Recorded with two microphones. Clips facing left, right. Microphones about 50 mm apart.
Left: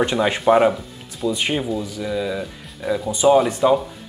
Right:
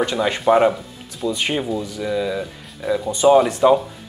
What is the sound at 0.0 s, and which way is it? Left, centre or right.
Speech, centre.